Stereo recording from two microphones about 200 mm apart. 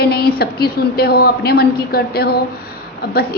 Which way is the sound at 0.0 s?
50° left (ahead or behind).